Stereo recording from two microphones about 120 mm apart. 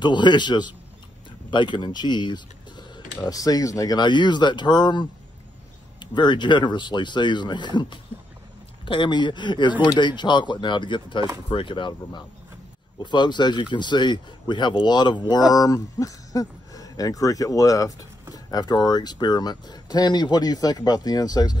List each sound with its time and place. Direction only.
0.0 s speech: 40° left (ahead or behind)